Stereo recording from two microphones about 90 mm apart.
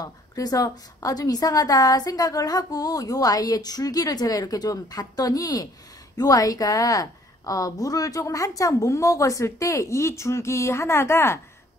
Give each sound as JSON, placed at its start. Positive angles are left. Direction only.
{"t": 0.0, "sound": "a woman's voice", "side_deg": 45}